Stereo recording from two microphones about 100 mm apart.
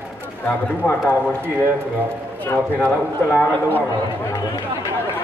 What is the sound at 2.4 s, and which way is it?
Speech, 20° left (ahead or behind).